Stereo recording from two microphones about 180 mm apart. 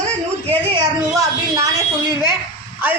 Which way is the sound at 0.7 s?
20° right (ahead or behind).